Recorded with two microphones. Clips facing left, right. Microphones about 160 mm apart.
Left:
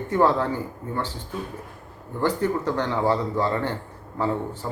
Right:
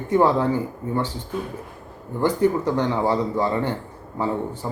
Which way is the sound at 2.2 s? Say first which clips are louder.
Right 4 dB; 15° right (ahead or behind).